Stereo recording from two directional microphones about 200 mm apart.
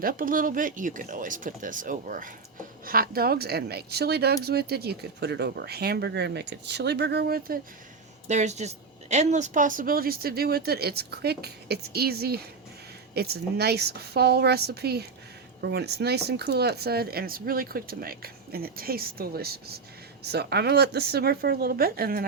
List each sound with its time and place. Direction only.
0.0 s speech: 45° right (ahead or behind)
8.3 s speech: 35° right (ahead or behind)